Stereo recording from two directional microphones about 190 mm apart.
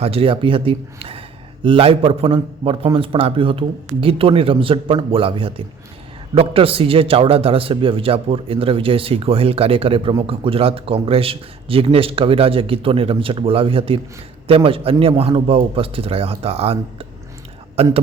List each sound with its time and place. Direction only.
0.0 s a man's voice: 30° right (ahead or behind)